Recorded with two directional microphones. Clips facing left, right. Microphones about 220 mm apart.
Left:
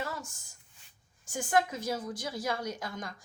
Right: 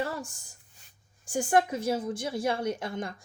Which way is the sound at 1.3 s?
30° right (ahead or behind).